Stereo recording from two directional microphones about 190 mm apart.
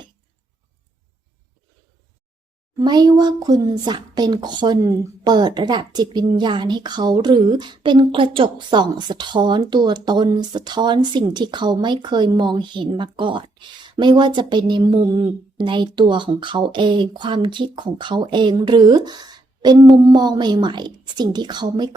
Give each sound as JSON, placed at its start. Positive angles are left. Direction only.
{"t": 2.7, "sound": "speech", "side_deg": -20}